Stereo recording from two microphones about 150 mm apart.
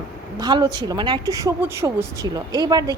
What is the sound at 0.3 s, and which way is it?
A woman's voice, 30° right (ahead or behind).